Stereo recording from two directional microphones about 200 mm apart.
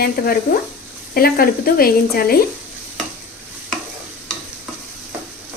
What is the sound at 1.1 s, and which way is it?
A woman's voice, 50° left (ahead or behind).